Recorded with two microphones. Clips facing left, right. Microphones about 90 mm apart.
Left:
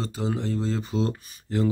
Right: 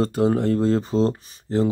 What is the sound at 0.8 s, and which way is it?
Speech, 35° right (ahead or behind).